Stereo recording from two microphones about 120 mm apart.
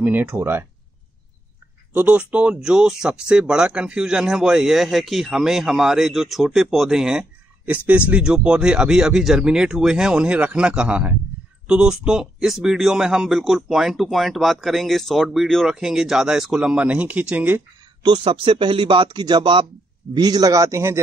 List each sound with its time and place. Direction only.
0.0 s speech: 15° right (ahead or behind)
2.0 s speech: 10° right (ahead or behind)
18.0 s a man's voice: 45° right (ahead or behind); by 21.0 s 25° right (ahead or behind)